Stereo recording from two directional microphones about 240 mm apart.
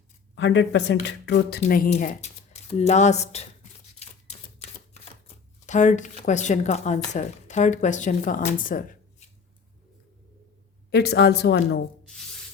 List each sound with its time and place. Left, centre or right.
0.3 s a woman's voice: left
4.0 s typewriter: left
5.6 s speech: left
10.9 s a woman's voice: left
12.0 s rub: centre